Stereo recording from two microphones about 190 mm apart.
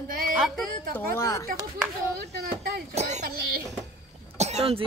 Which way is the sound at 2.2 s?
60° right (ahead or behind).